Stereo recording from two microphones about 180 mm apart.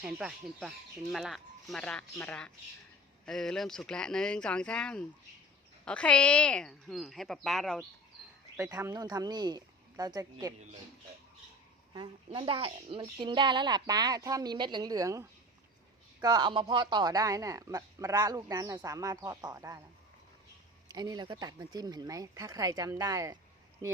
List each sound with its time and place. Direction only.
0.0 s a woman's voice: 5° right (ahead or behind)
8.6 s speech: 15° right (ahead or behind)
11.9 s speech: 25° right (ahead or behind)
20.8 s speech: 20° right (ahead or behind)